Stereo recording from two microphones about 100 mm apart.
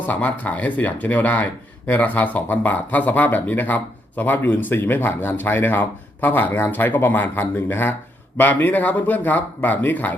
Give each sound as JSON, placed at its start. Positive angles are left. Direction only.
{"t": 0.0, "sound": "speech", "side_deg": 15}